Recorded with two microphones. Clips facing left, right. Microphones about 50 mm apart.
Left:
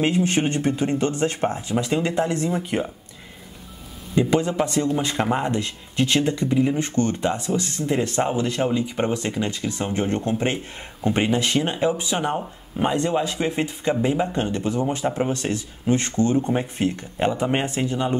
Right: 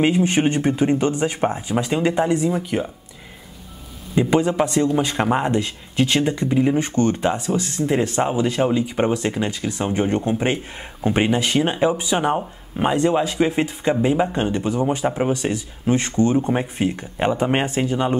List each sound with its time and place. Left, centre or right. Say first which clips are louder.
0.0 s speech: right 3 dB; right
2.7 s speech: right 1 dB; centre
4.1 s speech: right 2 dB; centre